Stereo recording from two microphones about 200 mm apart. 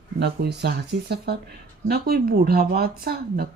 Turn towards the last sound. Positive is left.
turn(degrees=-50)  # may be behind; listen again after turning